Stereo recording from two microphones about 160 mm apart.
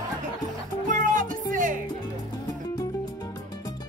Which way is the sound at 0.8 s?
50° right (ahead or behind).